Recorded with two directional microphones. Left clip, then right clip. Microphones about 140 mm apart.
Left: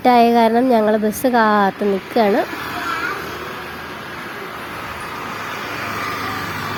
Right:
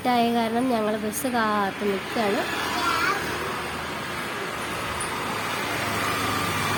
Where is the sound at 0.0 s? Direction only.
55° left (ahead or behind).